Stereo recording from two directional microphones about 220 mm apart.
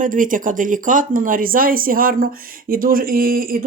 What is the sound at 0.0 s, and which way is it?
Speech, 35° right (ahead or behind).